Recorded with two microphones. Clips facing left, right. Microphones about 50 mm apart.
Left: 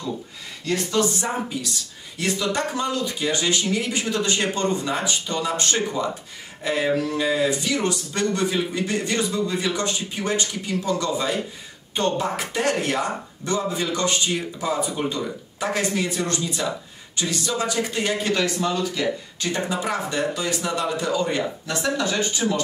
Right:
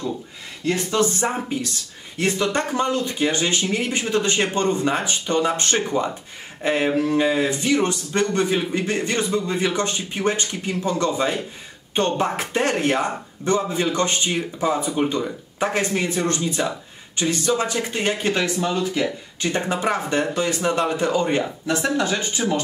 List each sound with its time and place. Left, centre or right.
0.7 s speech: right
21.6 s speech: right
22.4 s speech: centre